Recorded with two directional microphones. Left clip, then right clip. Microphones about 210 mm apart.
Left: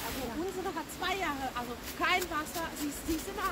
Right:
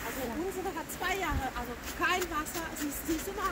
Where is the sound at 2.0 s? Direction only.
20° right (ahead or behind).